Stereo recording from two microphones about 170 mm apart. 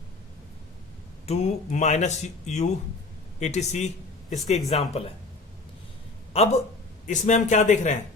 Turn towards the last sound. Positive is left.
turn(degrees=45)  # may be behind; listen again after turning